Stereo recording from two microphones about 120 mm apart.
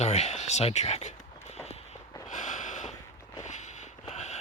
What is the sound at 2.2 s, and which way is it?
Snort, 90° left.